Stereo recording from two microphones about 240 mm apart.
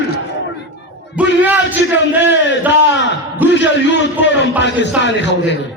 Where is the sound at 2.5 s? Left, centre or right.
Left.